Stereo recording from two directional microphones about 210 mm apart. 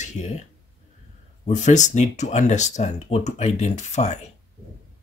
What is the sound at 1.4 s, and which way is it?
Speech, 35° left (ahead or behind).